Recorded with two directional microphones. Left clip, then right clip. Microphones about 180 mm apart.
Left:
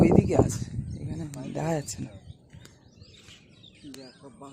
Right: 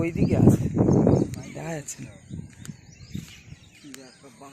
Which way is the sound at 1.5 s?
20° left (ahead or behind).